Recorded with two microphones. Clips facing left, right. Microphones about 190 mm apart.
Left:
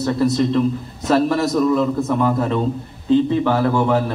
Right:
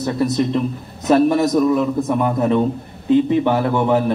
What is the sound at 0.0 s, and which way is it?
A man's voice, 20° right (ahead or behind).